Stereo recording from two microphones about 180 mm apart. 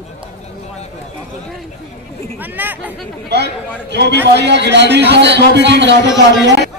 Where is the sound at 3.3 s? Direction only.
70° right (ahead or behind).